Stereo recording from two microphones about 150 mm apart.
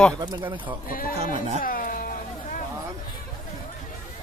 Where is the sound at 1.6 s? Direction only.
65° left (ahead or behind).